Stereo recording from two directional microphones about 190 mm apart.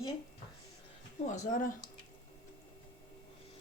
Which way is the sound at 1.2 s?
40° left (ahead or behind).